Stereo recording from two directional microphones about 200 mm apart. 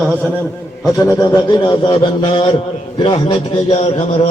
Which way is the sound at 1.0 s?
20° left (ahead or behind).